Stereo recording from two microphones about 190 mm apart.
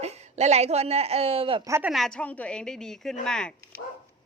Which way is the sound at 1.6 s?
15° right (ahead or behind).